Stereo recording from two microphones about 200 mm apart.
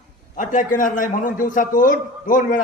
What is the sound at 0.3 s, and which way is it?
A man's voice, 40° left (ahead or behind).